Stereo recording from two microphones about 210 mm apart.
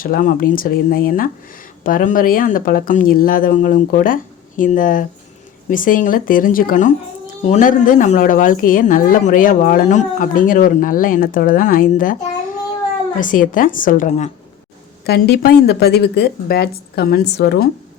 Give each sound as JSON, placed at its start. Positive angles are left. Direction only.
{"t": 0.0, "sound": "a woman's voice", "side_deg": 40}
{"t": 13.1, "sound": "a woman's voice", "side_deg": 40}
{"t": 15.0, "sound": "speech", "side_deg": 50}